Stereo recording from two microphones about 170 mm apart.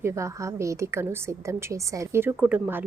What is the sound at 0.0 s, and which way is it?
A woman's voice, 15° right (ahead or behind).